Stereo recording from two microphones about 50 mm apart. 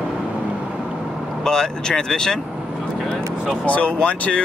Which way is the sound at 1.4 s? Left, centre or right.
Centre.